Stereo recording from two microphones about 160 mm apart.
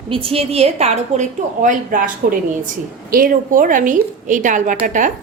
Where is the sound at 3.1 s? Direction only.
60° right (ahead or behind).